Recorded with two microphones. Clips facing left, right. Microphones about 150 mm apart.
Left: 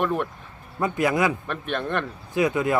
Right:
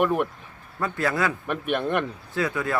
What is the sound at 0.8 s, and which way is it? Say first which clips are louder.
Speech: left 3 dB; 15° left (ahead or behind).